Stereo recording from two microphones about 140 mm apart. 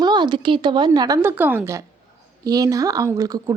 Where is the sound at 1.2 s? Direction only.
15° right (ahead or behind).